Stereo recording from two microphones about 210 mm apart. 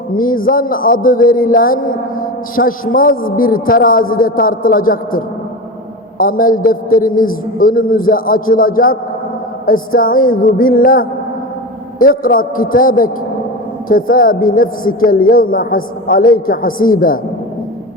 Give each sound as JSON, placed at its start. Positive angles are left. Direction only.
{"t": 0.1, "sound": "a woman's voice", "side_deg": 40}